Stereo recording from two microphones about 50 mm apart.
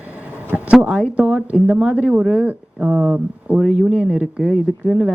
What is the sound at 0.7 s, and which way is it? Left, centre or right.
Speech, centre.